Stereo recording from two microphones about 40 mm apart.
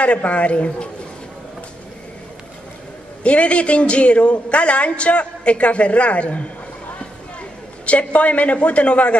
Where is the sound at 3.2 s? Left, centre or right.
Left.